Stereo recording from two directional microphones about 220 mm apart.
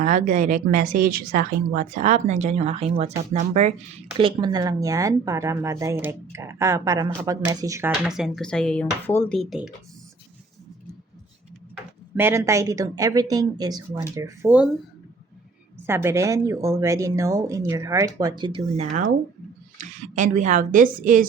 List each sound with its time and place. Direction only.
0.0 s speech: 35° right (ahead or behind)
4.2 s speech: 20° right (ahead or behind); by 9.7 s centre (ahead or behind)
12.1 s speech: 10° right (ahead or behind)
15.9 s speech: 10° right (ahead or behind); by 21.2 s 40° right (ahead or behind)